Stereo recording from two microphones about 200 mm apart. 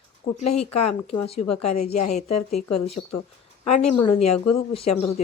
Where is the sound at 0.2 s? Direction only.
45° left (ahead or behind).